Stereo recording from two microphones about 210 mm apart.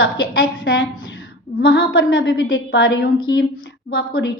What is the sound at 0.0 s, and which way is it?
A woman's voice, 70° left (ahead or behind).